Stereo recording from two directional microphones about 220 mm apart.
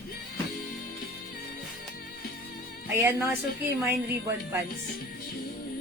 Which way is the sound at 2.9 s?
10° right (ahead or behind).